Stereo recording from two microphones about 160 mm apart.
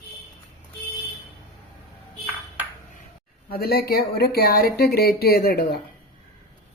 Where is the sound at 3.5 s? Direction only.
75° left (ahead or behind).